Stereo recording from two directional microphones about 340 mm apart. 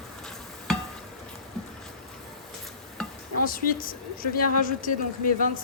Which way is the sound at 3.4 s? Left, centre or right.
Left.